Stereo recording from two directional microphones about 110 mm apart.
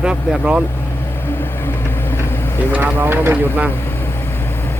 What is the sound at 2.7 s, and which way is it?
Speech, 15° right (ahead or behind).